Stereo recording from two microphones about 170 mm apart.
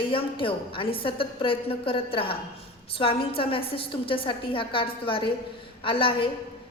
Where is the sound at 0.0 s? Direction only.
30° left (ahead or behind).